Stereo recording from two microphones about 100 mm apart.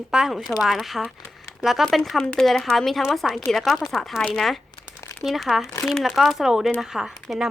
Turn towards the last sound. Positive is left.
turn(degrees=0)  # may be behind; listen again after turning